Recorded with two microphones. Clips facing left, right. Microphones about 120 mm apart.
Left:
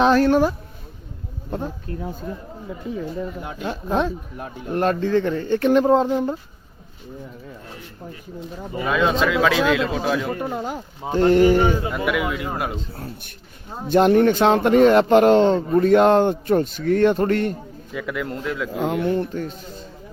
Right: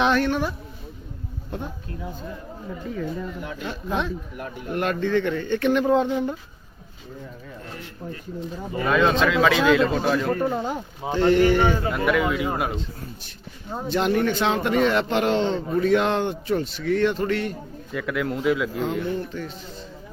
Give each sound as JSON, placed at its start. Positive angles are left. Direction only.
{"t": 0.0, "sound": "speech", "side_deg": 35}
{"t": 2.8, "sound": "speech", "side_deg": 15}
{"t": 3.6, "sound": "speech", "side_deg": 40}
{"t": 8.8, "sound": "a man's voice", "side_deg": 5}
{"t": 11.1, "sound": "speech", "side_deg": 40}
{"t": 11.9, "sound": "a man's voice", "side_deg": 5}
{"t": 13.9, "sound": "speech", "side_deg": 45}
{"t": 17.9, "sound": "a man's voice", "side_deg": 0}
{"t": 18.8, "sound": "speech", "side_deg": 60}
{"t": 19.3, "sound": "speech", "side_deg": 45}